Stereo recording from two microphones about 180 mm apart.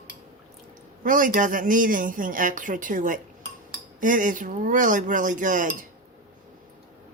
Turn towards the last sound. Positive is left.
turn(degrees=-45)  # may be behind; listen again after turning